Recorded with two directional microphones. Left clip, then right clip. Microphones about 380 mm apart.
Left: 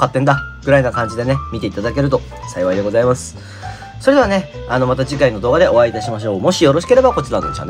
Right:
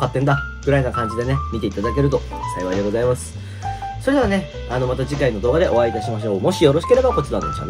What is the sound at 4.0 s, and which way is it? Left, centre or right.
Speech, left.